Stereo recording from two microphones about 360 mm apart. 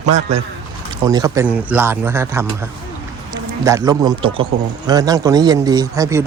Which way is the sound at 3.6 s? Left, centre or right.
Centre.